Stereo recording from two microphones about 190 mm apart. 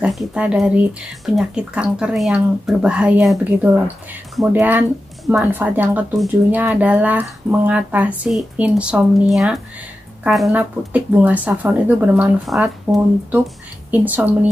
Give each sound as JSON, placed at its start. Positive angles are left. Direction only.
{"t": 0.0, "sound": "a woman's voice", "side_deg": 0}